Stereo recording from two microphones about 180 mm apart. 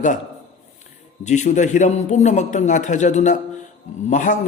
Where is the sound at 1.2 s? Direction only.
40° left (ahead or behind).